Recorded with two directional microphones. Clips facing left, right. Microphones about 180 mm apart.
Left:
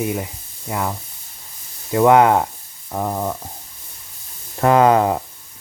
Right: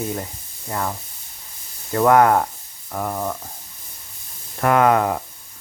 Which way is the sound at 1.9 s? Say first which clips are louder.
Left 2 dB; 20° left (ahead or behind).